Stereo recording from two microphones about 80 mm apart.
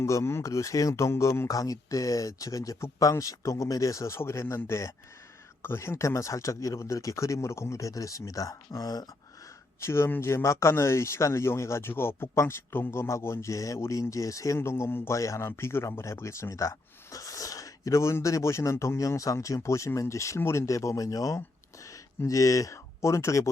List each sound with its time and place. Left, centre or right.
0.0 s speech: left
1.5 s speech: left
9.8 s speech: left